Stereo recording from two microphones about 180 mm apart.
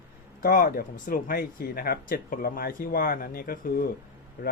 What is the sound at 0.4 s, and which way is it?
Speech, 55° left (ahead or behind).